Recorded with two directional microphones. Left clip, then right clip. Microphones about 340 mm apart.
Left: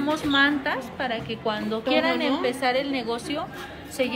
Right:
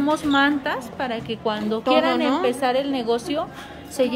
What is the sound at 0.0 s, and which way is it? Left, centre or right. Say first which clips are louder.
A woman's voice: right 2 dB; right.